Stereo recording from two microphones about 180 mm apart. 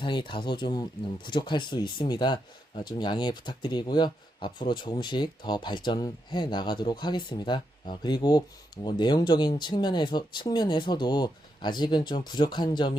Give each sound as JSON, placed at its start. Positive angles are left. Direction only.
{"t": 0.0, "sound": "speech", "side_deg": 25}